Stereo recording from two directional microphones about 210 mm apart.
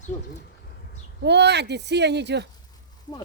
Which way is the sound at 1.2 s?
55° right (ahead or behind).